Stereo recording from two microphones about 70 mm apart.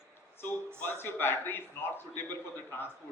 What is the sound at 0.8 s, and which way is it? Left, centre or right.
A man's voice, left.